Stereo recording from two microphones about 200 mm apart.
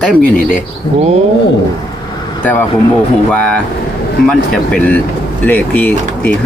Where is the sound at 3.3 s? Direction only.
5° left (ahead or behind).